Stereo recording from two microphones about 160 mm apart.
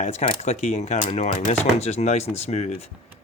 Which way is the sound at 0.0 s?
45° left (ahead or behind).